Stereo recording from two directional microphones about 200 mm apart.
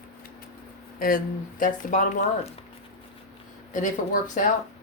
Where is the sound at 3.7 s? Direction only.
40° left (ahead or behind).